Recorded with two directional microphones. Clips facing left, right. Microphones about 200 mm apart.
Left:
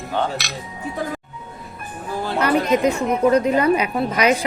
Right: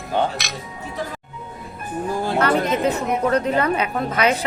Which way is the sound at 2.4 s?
15° left (ahead or behind).